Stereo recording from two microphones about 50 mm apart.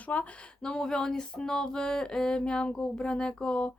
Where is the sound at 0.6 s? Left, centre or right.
Centre.